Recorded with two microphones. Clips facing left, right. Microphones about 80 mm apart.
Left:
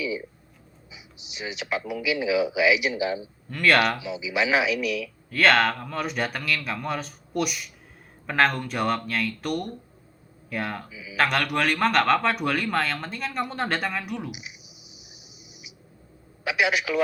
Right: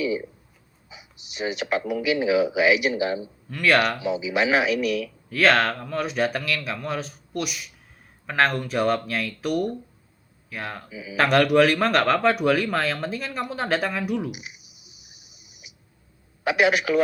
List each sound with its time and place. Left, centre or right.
0.9 s speech: right
3.5 s a man's voice: centre
4.0 s speech: right
5.3 s a man's voice: centre
10.8 s speech: right
11.2 s a man's voice: centre
14.3 s cricket: right
16.4 s speech: right